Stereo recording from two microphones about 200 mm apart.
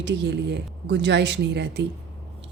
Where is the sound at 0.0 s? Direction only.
60° right (ahead or behind).